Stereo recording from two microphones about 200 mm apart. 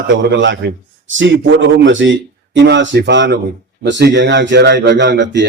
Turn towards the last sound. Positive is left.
turn(degrees=-60)  # may be behind; listen again after turning